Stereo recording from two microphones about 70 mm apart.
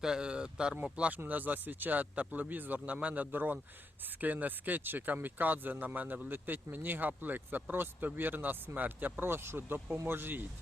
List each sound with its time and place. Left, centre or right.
0.0 s speech: centre; by 10.4 s right